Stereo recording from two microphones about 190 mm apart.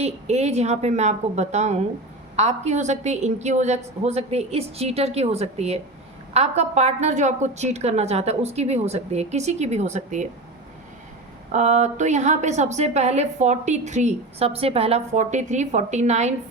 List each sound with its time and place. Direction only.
0.0 s a woman's voice: 35° right (ahead or behind)
11.5 s a woman's voice: 35° right (ahead or behind)